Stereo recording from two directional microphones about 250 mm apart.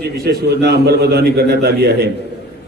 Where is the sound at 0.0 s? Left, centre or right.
Right.